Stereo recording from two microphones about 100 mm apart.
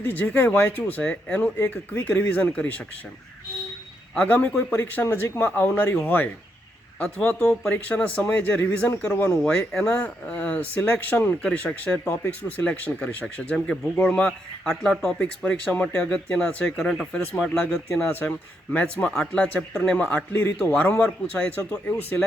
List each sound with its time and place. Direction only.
0.0 s speech: 20° left (ahead or behind)
4.1 s speech: 15° left (ahead or behind)
9.4 s speech: 10° left (ahead or behind)
12.0 s speech: 25° left (ahead or behind)